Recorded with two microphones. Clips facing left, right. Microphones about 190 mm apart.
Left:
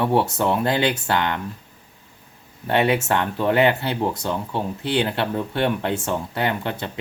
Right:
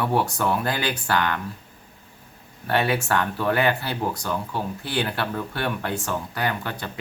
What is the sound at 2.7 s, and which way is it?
Speech, 20° left (ahead or behind).